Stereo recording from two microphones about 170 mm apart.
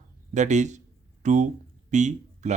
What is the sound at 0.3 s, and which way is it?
Speech, 45° right (ahead or behind).